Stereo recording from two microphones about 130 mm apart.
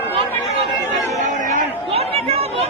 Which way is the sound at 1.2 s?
70° right (ahead or behind).